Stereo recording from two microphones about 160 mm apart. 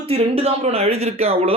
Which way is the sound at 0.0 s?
40° right (ahead or behind).